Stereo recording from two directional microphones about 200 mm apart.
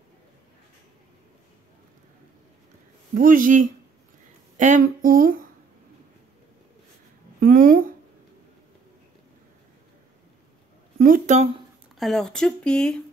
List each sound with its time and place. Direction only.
3.2 s speech: 45° right (ahead or behind)
7.3 s a woman's voice: 45° right (ahead or behind)
11.0 s a sound: 45° right (ahead or behind)
12.0 s speech: centre (ahead or behind)